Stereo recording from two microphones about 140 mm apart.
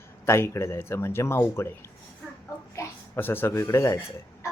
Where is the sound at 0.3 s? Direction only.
20° left (ahead or behind).